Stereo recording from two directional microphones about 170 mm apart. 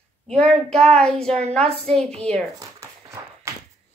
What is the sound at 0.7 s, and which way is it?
A woman's voice, 5° left (ahead or behind).